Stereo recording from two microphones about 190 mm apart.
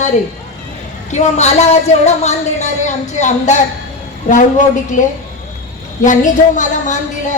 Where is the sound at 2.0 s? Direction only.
35° left (ahead or behind).